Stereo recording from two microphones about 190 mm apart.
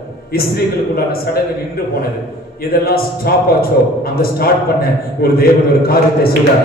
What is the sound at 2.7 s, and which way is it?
A man's voice, 55° left (ahead or behind).